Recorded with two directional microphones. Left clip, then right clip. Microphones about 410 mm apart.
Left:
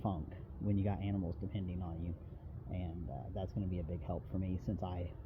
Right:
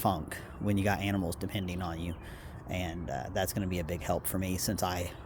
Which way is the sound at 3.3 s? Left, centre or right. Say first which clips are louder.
Right 10 dB; centre.